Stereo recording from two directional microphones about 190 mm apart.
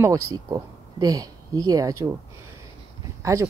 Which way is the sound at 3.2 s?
15° right (ahead or behind).